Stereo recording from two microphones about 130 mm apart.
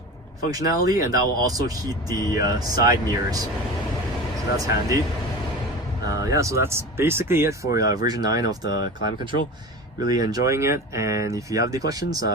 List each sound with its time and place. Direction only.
0.9 s speech: 25° right (ahead or behind)
4.5 s speech: 25° right (ahead or behind)
6.1 s speech: 25° right (ahead or behind)